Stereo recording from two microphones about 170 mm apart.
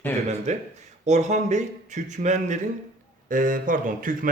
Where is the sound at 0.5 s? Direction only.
45° right (ahead or behind).